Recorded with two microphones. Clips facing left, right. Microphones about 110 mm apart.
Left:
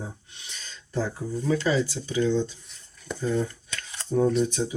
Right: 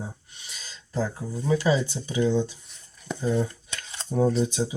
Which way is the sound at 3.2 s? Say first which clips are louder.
Right 1 dB; 15° right (ahead or behind).